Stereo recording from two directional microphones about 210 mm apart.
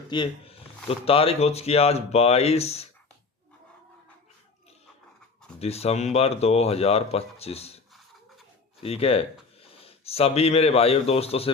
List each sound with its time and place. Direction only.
0.1 s speech: 20° left (ahead or behind)
5.5 s speech: 30° left (ahead or behind)
8.8 s speech: 30° left (ahead or behind)